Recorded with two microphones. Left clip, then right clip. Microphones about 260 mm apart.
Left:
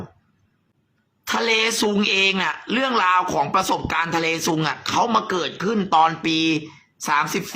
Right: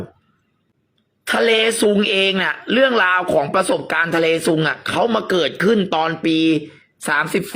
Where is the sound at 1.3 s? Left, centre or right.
Centre.